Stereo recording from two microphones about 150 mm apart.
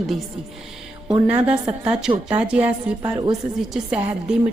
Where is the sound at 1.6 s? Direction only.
10° right (ahead or behind).